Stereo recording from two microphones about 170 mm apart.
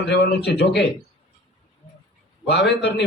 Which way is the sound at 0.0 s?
75° left (ahead or behind).